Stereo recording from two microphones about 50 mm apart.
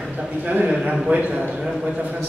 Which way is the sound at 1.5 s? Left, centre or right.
Centre.